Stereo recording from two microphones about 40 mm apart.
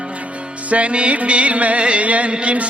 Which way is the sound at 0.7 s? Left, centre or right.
Right.